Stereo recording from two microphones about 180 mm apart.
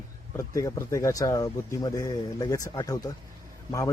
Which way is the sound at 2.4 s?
20° left (ahead or behind).